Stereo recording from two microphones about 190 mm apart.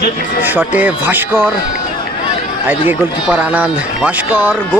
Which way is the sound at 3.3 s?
5° right (ahead or behind).